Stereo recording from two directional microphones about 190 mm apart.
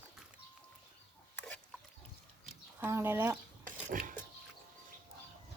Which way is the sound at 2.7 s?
10° right (ahead or behind).